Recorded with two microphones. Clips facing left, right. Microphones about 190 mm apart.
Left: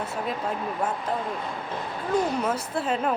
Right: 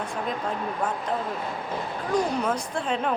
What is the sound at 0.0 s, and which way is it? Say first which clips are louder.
Speech: even; 5° left (ahead or behind).